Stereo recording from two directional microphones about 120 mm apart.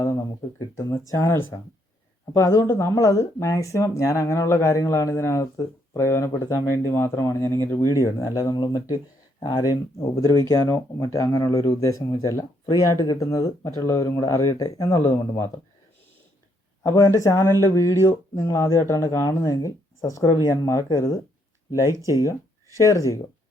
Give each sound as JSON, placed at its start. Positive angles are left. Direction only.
{"t": 0.6, "sound": "speech", "side_deg": 25}
{"t": 10.2, "sound": "speech", "side_deg": 20}
{"t": 16.8, "sound": "speech", "side_deg": 25}